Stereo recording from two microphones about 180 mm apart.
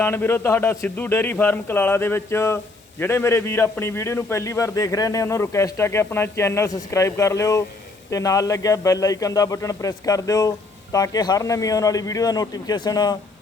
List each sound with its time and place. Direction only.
0.0 s a man's voice: 10° left (ahead or behind)